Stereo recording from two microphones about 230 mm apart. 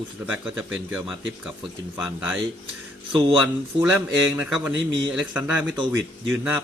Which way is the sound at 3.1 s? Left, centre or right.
Right.